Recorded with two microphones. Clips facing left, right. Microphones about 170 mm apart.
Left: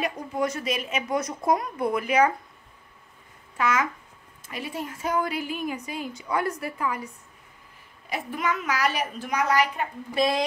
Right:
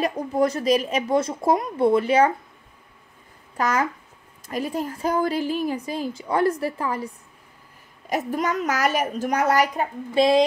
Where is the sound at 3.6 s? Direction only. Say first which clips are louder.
Right 2 dB; 40° right (ahead or behind).